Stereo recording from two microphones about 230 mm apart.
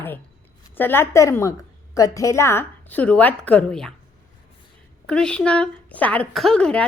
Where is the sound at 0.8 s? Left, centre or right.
Centre.